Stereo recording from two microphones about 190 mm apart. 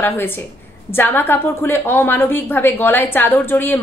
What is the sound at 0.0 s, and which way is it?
A woman's voice, 10° left (ahead or behind).